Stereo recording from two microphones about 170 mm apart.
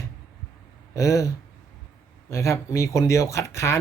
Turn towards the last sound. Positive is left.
turn(degrees=15)  # may be behind; listen again after turning